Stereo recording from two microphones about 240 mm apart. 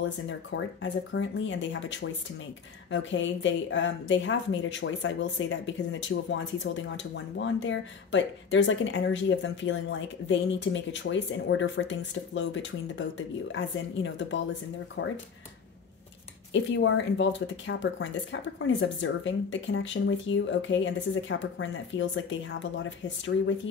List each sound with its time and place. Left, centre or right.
0.3 s speech: left
16.5 s speech: left